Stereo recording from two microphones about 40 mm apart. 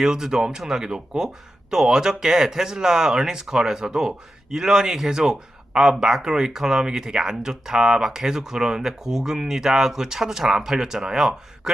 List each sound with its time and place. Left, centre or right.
0.0 s speech: centre